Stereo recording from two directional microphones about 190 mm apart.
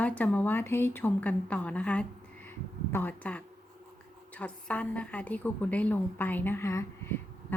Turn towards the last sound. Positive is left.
turn(degrees=15)  # may be behind; listen again after turning